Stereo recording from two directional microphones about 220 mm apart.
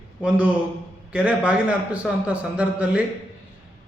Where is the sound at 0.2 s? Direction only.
5° right (ahead or behind).